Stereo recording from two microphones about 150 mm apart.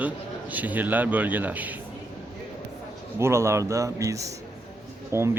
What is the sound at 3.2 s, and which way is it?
Speech, 20° right (ahead or behind).